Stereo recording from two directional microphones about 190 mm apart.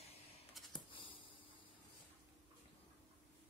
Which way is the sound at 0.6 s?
Centre (ahead or behind).